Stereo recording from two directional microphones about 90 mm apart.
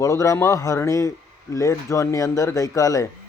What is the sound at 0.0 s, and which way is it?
Speech, 35° left (ahead or behind).